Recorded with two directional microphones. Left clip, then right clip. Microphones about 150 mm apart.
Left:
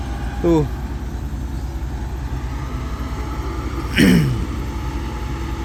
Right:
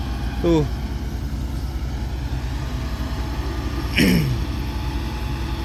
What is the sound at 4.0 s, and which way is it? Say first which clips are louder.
Speech: left 4 dB; 40° left (ahead or behind).